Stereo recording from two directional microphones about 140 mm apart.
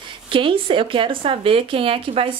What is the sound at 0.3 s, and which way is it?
Speech, 35° right (ahead or behind).